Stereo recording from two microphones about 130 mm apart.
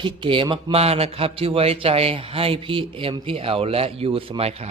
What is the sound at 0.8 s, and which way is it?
A man's voice, 50° right (ahead or behind).